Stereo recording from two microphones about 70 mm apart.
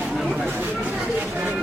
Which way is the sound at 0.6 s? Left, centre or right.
Right.